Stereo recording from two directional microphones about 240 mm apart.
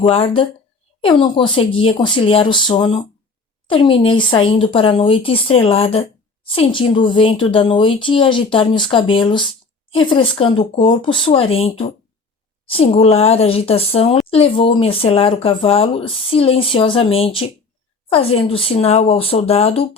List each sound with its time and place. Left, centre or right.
0.0 s speech: left